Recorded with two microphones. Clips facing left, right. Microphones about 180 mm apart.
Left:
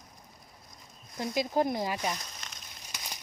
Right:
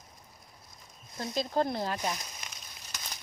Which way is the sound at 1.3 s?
15° left (ahead or behind).